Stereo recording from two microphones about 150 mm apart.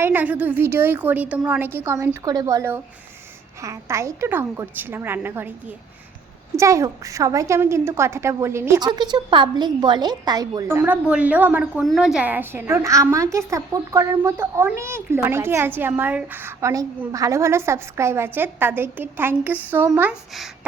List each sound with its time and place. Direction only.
0.0 s a woman's voice: 10° right (ahead or behind)